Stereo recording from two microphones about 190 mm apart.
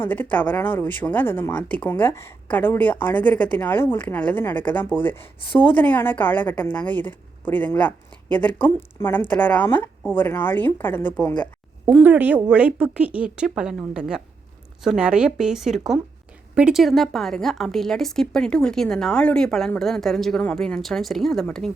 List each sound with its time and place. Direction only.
0.0 s speech: 10° left (ahead or behind)
11.9 s speech: 5° right (ahead or behind)